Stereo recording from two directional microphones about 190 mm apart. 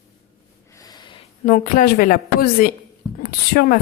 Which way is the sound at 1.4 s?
45° left (ahead or behind).